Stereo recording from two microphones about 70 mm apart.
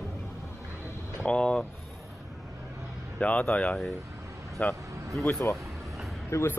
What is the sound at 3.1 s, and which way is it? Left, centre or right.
Speech, centre.